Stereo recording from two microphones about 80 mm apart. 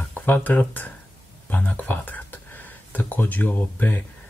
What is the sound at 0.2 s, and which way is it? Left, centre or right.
Speech, left.